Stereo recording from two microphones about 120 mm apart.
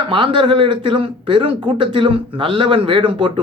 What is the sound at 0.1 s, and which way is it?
A man's voice, 45° right (ahead or behind).